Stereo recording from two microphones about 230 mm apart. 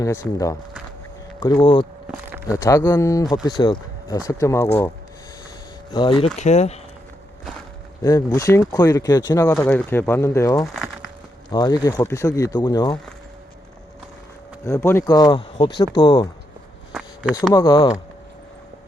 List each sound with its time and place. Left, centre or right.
0.0 s speech: centre
1.6 s speech: centre
5.9 s speech: left
8.0 s speech: centre
14.6 s speech: centre
16.9 s a sound: centre
17.5 s speech: centre